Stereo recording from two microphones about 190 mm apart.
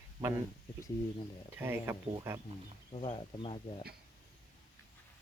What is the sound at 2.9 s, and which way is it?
Speech, 30° left (ahead or behind).